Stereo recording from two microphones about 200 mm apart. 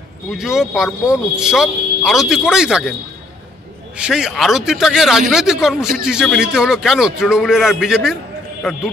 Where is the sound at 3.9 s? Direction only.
5° right (ahead or behind).